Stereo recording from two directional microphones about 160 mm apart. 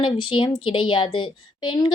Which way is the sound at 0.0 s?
30° left (ahead or behind).